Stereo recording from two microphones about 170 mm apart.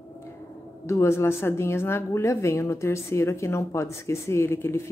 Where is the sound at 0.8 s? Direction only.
15° left (ahead or behind).